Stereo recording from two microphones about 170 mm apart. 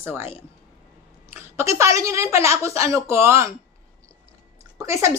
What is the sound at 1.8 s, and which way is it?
Speech, 20° right (ahead or behind).